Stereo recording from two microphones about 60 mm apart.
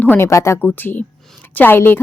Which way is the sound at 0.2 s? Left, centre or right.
Left.